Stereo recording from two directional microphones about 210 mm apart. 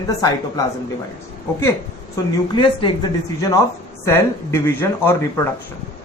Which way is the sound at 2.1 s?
20° left (ahead or behind).